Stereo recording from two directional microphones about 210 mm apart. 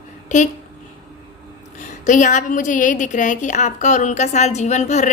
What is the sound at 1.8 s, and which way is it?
A child's voice, 35° left (ahead or behind).